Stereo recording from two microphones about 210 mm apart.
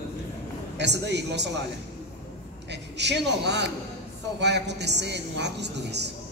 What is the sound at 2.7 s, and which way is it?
A woman's voice, 55° right (ahead or behind).